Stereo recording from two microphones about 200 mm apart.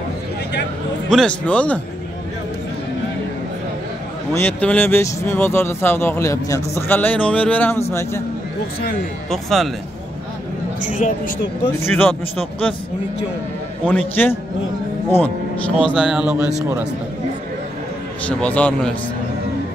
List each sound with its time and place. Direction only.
1.1 s speech: 5° left (ahead or behind)
4.3 s speech: 10° left (ahead or behind)
9.3 s a man's voice: centre (ahead or behind)
10.9 s speech: 40° left (ahead or behind)
11.8 s speech: 10° left (ahead or behind)
13.8 s speech: 10° left (ahead or behind)
15.9 s a man's voice: 5° right (ahead or behind)
18.4 s a man's voice: 5° left (ahead or behind)